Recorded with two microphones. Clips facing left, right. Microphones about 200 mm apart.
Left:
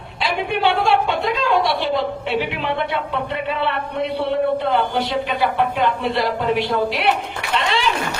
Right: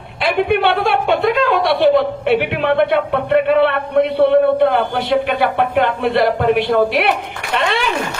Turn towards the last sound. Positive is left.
turn(degrees=-55)  # may be behind; listen again after turning